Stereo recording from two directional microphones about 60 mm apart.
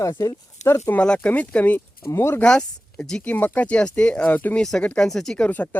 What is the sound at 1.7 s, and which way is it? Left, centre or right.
Speech, left.